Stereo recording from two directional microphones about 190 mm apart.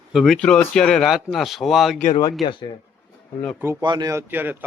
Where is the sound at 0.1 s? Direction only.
Centre (ahead or behind).